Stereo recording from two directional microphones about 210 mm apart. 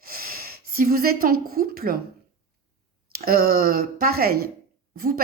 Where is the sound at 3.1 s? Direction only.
45° right (ahead or behind).